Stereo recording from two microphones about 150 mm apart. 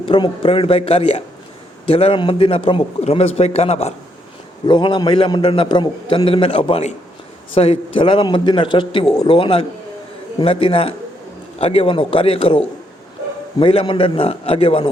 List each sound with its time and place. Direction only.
0.0 s a man's voice: 35° left (ahead or behind)
4.6 s a man's voice: 30° left (ahead or behind)